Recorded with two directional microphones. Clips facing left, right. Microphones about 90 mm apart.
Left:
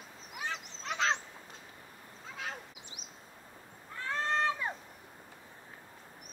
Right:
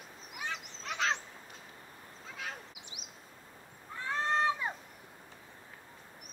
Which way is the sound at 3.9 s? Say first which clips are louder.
Right 1 dB; 15° right (ahead or behind).